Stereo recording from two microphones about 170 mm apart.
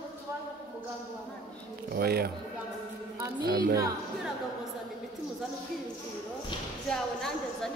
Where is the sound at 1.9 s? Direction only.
65° right (ahead or behind).